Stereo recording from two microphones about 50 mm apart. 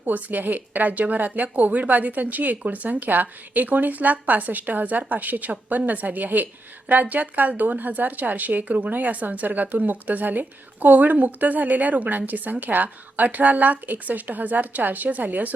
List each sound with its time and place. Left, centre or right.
0.0 s speech: right